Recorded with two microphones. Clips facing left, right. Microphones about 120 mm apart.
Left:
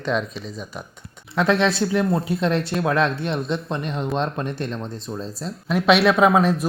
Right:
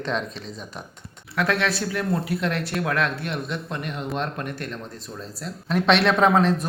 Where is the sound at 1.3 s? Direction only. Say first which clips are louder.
Left 5 dB; 25° left (ahead or behind).